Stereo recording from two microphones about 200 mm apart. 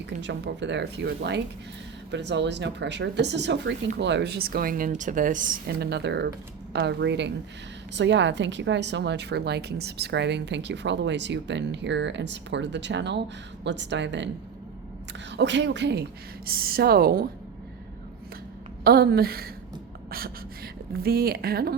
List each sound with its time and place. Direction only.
0.2 s a woman's voice: 60° right (ahead or behind)
15.3 s a woman's voice: 60° right (ahead or behind)
16.5 s speech: 50° right (ahead or behind)
18.9 s speech: 50° right (ahead or behind)